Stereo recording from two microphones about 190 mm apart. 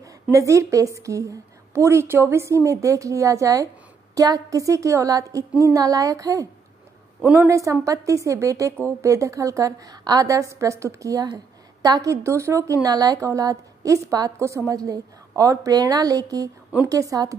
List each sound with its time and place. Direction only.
0.0 s a woman's voice: 15° right (ahead or behind)